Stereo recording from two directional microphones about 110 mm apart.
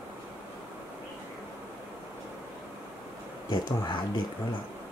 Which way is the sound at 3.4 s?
45° left (ahead or behind).